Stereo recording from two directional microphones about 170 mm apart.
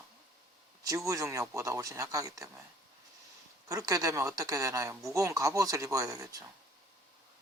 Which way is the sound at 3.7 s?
20° right (ahead or behind).